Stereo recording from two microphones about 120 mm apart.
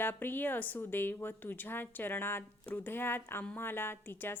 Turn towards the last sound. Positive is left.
turn(degrees=20)  # may be behind; listen again after turning